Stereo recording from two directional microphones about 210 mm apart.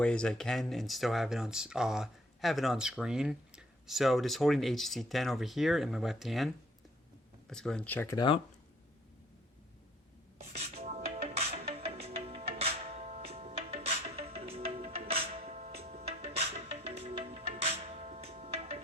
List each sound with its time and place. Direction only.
0.0 s speech: 5° left (ahead or behind)
10.5 s music: 30° right (ahead or behind)